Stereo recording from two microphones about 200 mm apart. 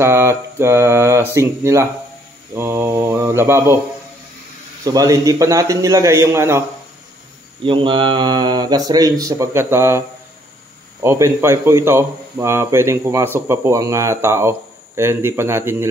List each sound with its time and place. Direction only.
0.0 s a man's voice: 10° right (ahead or behind)
4.8 s a man's voice: 15° right (ahead or behind)
7.6 s a man's voice: 25° right (ahead or behind)